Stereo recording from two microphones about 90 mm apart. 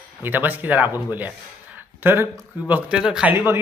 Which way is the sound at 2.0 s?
25° right (ahead or behind).